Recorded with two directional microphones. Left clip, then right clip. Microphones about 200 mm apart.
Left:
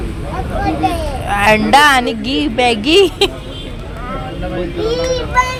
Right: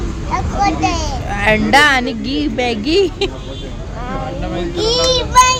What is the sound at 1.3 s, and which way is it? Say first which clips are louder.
Speech: left 3 dB; 5° right (ahead or behind).